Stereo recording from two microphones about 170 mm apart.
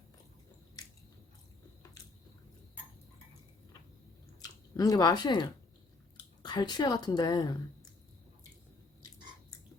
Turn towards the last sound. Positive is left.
turn(degrees=25)  # may be behind; listen again after turning